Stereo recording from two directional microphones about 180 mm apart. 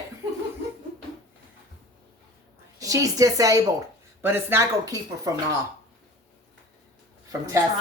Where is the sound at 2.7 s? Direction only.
20° right (ahead or behind).